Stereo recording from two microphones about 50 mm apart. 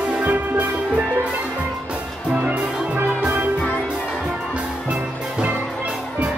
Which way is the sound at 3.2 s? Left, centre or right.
Right.